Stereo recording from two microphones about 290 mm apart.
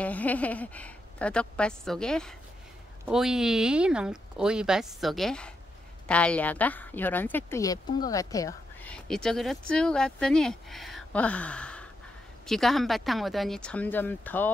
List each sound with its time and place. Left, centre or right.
0.0 s speech: centre